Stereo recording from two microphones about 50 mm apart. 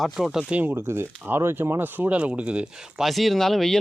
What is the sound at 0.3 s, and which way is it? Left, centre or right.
Speech, centre.